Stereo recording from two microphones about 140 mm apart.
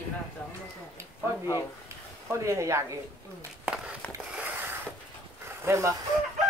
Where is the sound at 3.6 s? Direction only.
5° right (ahead or behind).